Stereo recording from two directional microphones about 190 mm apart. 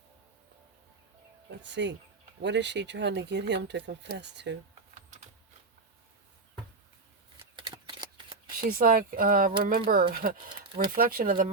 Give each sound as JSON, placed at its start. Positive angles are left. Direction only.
{"t": 1.5, "sound": "speech", "side_deg": -70}
{"t": 7.5, "sound": "shuffling cards", "side_deg": -20}
{"t": 8.6, "sound": "speech", "side_deg": -50}